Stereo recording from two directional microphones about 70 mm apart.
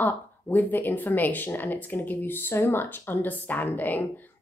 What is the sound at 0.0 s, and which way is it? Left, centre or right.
A woman's voice, left.